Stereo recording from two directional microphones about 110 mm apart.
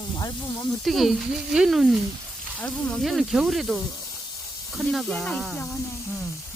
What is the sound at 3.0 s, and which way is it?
Speech, centre (ahead or behind).